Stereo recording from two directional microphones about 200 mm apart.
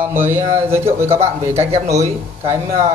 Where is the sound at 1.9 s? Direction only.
15° right (ahead or behind).